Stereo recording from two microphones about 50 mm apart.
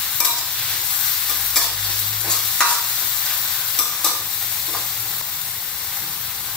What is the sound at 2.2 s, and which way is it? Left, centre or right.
Stir, centre.